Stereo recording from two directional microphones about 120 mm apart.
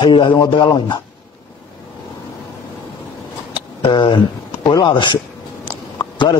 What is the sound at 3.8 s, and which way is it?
A man's voice, 45° left (ahead or behind).